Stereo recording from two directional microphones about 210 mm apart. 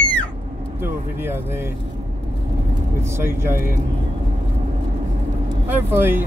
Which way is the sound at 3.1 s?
10° right (ahead or behind).